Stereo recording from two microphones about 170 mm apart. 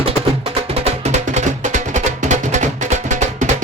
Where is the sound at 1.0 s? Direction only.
45° right (ahead or behind).